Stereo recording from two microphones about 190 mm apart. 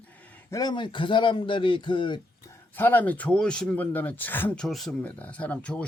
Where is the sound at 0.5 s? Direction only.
20° left (ahead or behind).